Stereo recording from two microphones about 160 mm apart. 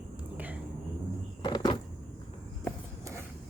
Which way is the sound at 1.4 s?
25° left (ahead or behind).